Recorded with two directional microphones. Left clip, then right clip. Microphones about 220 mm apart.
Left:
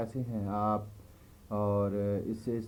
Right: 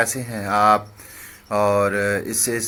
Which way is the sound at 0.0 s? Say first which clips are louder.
Right 15 dB; 70° right (ahead or behind).